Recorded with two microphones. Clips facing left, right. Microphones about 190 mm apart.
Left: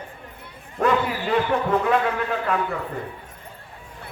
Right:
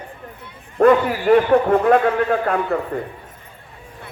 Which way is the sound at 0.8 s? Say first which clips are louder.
Right 8 dB; 55° right (ahead or behind).